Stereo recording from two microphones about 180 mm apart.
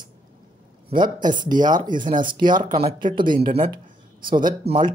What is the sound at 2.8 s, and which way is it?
Speech, 35° right (ahead or behind).